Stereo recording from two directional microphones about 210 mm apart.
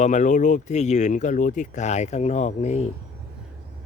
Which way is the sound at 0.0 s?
35° left (ahead or behind).